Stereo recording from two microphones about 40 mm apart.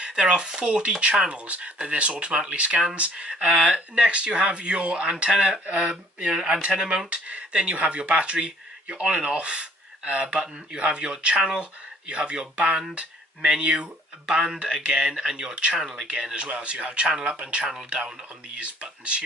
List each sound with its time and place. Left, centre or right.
0.0 s speech: right
3.6 s speech: right
7.1 s speech: right; by 15.5 s centre
15.5 s speech: right
15.8 s speech: centre
18.5 s speech: right